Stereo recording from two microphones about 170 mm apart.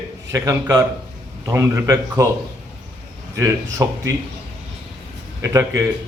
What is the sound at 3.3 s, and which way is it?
Speech, 20° right (ahead or behind).